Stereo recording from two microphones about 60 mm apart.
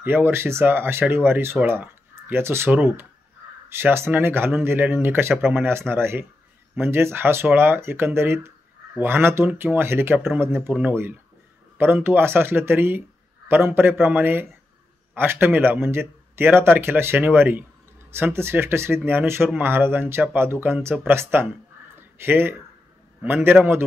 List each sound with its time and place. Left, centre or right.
0.0 s speech: right
10.7 s speech: right
11.8 s speech: right